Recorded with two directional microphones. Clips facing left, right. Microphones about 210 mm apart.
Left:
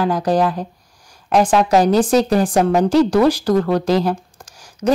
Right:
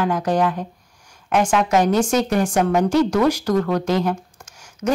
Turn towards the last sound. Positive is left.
turn(degrees=35)  # may be behind; listen again after turning